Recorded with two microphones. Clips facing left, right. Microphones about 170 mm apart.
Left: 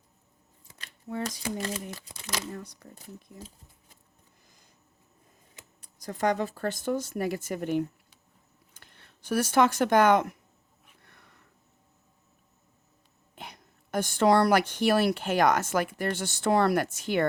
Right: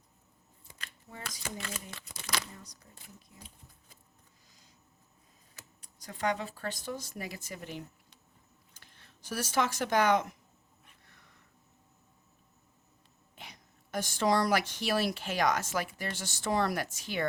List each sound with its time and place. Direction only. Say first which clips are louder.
1.2 s speech: left 8 dB; 40° left (ahead or behind)
6.0 s speech: left 6 dB; 45° left (ahead or behind)
11.0 s a sound: left 4 dB; 60° left (ahead or behind)
13.3 s a woman's voice: left 6 dB; 55° left (ahead or behind)